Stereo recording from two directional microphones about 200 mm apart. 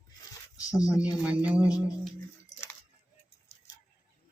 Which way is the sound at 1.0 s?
5° right (ahead or behind).